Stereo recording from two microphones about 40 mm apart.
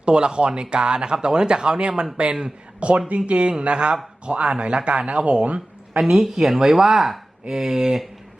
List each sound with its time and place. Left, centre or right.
0.0 s a man's voice: right
6.0 s speech: centre